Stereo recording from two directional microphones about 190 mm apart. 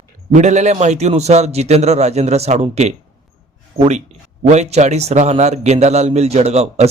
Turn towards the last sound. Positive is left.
turn(degrees=-35)  # may be behind; listen again after turning